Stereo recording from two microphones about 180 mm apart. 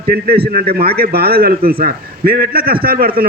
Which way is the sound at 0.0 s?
55° right (ahead or behind).